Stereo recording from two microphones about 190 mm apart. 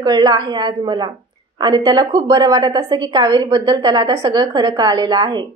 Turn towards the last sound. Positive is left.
turn(degrees=-20)  # may be behind; listen again after turning